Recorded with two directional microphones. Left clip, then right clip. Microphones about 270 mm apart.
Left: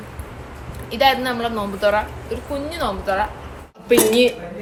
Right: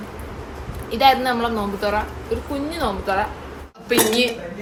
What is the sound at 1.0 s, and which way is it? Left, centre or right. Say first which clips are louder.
Speech: right 1 dB; centre.